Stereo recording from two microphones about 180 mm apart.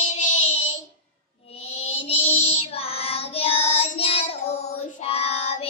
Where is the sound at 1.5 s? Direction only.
35° left (ahead or behind).